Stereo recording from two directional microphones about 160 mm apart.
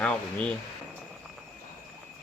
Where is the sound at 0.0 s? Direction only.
5° left (ahead or behind).